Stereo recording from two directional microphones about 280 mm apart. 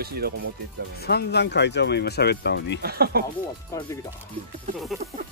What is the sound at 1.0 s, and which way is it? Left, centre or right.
Speech, left.